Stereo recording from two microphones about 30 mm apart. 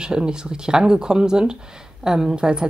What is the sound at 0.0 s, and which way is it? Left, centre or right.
Speech, right.